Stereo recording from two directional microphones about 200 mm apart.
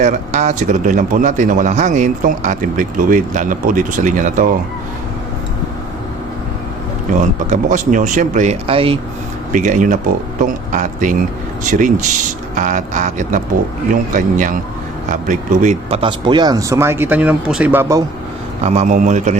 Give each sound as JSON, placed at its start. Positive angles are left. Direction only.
{"t": 0.0, "sound": "speech", "side_deg": -40}
{"t": 7.1, "sound": "speech", "side_deg": -40}
{"t": 9.5, "sound": "speech", "side_deg": -40}
{"t": 18.6, "sound": "speech", "side_deg": -35}